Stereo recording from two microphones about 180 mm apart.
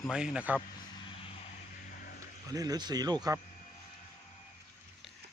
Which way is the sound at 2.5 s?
20° right (ahead or behind).